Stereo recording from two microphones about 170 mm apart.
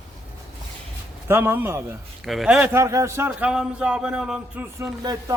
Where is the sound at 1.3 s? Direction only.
15° right (ahead or behind).